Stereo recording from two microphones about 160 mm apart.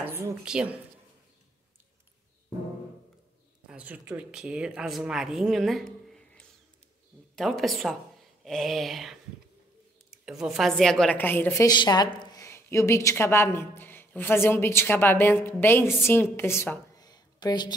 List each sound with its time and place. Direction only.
0.0 s a woman's voice: 10° right (ahead or behind)
3.6 s a woman's voice: 10° right (ahead or behind); by 11.6 s 10° left (ahead or behind)
11.6 s a woman's voice: 25° left (ahead or behind)
16.9 s a sound: 25° left (ahead or behind)